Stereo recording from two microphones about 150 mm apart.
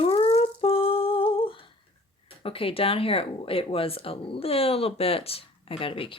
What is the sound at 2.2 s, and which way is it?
Speech, 35° left (ahead or behind).